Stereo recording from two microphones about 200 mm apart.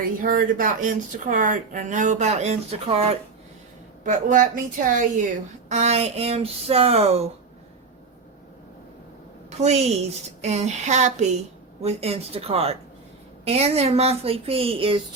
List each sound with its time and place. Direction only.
0.2 s speech: 45° right (ahead or behind)
9.6 s a woman's voice: 35° right (ahead or behind)